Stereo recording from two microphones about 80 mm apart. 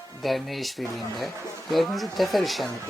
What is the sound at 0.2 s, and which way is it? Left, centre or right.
Speech, centre.